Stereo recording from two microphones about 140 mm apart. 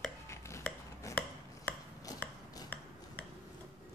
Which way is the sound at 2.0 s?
25° left (ahead or behind).